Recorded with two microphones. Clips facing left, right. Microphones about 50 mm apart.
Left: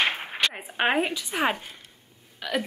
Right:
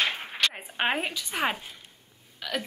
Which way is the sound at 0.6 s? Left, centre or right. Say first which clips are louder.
Left 4 dB; centre.